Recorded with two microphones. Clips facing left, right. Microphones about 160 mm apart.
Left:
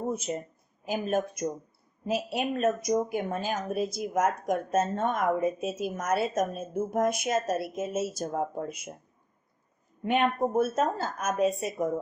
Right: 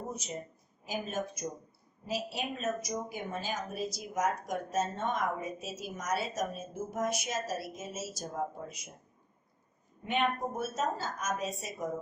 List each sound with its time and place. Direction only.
0.1 s speech: 55° left (ahead or behind)
10.1 s speech: 55° left (ahead or behind)